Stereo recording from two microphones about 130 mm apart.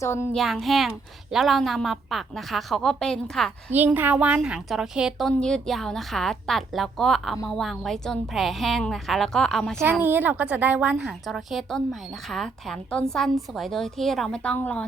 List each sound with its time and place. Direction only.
0.0 s speech: 20° left (ahead or behind)
0.3 s a woman's voice: centre (ahead or behind)
3.7 s a woman's voice: 15° right (ahead or behind)
5.3 s a woman's voice: 5° left (ahead or behind)
9.8 s a woman's voice: 15° right (ahead or behind); by 14.8 s 10° left (ahead or behind)